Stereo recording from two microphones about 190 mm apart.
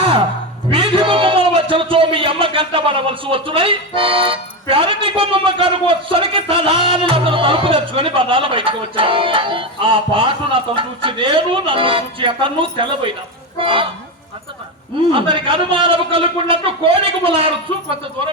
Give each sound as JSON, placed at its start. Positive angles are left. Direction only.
{"t": 0.7, "sound": "a man's voice", "side_deg": -25}
{"t": 15.1, "sound": "a man's voice", "side_deg": -25}